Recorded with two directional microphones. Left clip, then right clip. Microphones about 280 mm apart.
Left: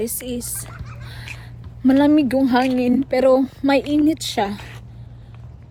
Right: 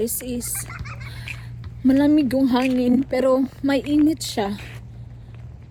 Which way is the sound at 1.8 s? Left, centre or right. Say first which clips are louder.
Left 2 dB; centre.